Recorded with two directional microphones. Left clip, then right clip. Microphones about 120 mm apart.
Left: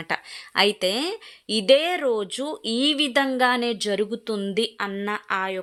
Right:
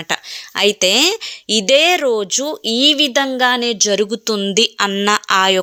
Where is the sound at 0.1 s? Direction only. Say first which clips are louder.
Right 6 dB; 20° right (ahead or behind).